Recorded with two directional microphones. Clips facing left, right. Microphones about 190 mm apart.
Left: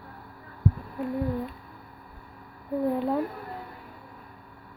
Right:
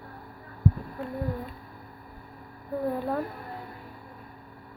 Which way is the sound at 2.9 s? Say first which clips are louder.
Left 3 dB; 20° left (ahead or behind).